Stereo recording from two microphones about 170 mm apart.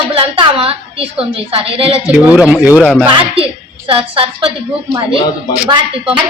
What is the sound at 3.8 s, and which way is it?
Speech, 35° right (ahead or behind).